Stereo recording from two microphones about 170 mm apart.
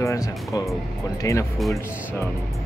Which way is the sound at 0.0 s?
15° left (ahead or behind).